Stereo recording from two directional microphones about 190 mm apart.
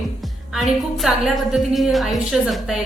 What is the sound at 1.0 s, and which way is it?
A woman's voice, 5° right (ahead or behind).